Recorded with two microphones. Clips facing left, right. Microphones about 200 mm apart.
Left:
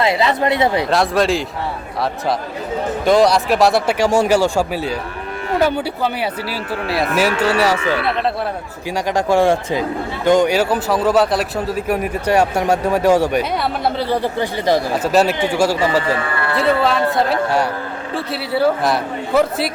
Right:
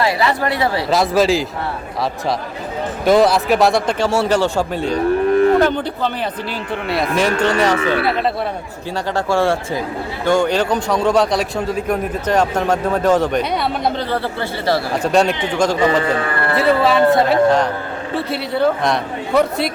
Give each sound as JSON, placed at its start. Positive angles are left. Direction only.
{"t": 0.0, "sound": "speech", "side_deg": 20}
{"t": 0.9, "sound": "a man's voice", "side_deg": 0}
{"t": 3.1, "sound": "a man's voice", "side_deg": 0}
{"t": 9.1, "sound": "a man's voice", "side_deg": 15}
{"t": 15.0, "sound": "a man's voice", "side_deg": 5}